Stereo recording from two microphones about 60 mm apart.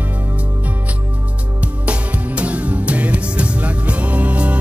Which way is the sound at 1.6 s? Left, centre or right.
Right.